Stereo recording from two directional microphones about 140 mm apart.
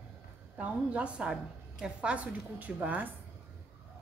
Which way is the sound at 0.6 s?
10° right (ahead or behind).